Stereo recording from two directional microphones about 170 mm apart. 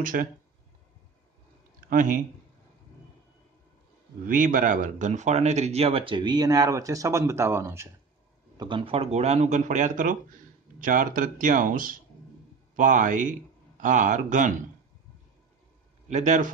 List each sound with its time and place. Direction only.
0.0 s speech: 55° right (ahead or behind)
1.8 s speech: 55° right (ahead or behind)
4.3 s speech: 50° right (ahead or behind); by 7.9 s 15° right (ahead or behind)
8.5 s a man's voice: 30° right (ahead or behind); by 14.5 s 50° right (ahead or behind)
16.1 s speech: 45° right (ahead or behind)